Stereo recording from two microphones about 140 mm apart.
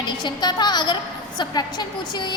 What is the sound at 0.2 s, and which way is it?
A woman's voice, 30° left (ahead or behind).